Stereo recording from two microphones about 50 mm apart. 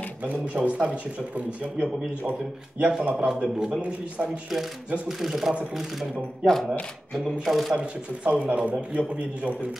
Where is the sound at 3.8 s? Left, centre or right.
Right.